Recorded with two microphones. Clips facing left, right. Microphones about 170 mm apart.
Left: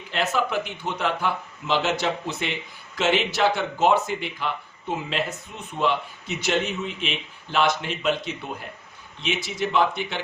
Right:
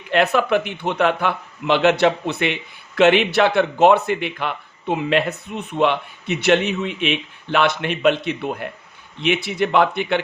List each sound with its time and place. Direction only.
0.1 s a man's voice: 60° right (ahead or behind)